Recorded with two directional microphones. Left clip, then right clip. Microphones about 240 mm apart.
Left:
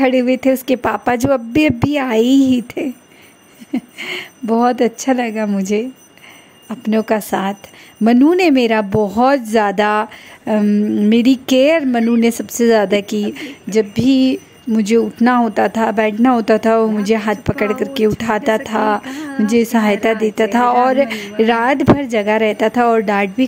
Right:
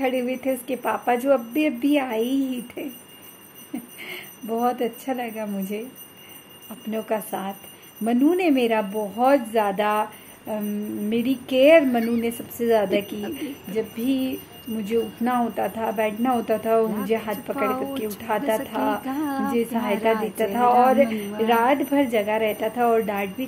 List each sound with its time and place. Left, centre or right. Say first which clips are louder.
0.0 s speech: left 10 dB; left
19.1 s a woman's voice: left 4 dB; centre
19.5 s speech: left 13 dB; left